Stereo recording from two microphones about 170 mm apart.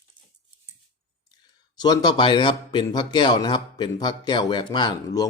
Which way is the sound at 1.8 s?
25° left (ahead or behind).